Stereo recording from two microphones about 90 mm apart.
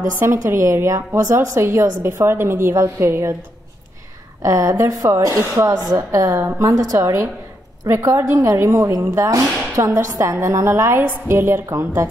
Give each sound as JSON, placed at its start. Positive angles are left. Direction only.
{"t": 0.2, "sound": "a woman's voice", "side_deg": -25}
{"t": 4.4, "sound": "a woman's voice", "side_deg": -35}
{"t": 5.8, "sound": "a woman's voice", "side_deg": -40}